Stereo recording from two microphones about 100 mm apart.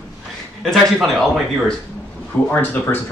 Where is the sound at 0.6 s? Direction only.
Centre (ahead or behind).